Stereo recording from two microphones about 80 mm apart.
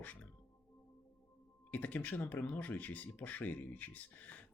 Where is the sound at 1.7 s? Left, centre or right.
Centre.